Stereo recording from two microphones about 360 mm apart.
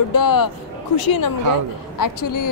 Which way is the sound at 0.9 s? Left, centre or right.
Left.